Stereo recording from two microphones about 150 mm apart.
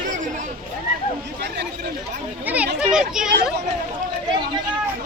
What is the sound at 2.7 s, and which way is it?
Children playing, 5° right (ahead or behind).